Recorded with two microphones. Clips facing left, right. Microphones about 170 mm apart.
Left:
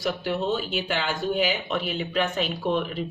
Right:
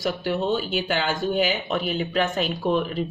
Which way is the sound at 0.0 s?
40° right (ahead or behind).